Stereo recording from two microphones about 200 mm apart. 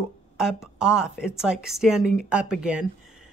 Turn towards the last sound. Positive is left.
turn(degrees=-5)  # may be behind; listen again after turning